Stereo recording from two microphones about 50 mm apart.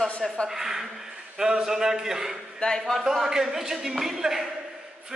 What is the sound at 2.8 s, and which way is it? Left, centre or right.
Speech, centre.